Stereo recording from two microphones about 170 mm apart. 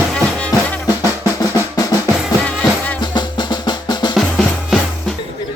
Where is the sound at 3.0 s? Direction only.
25° left (ahead or behind).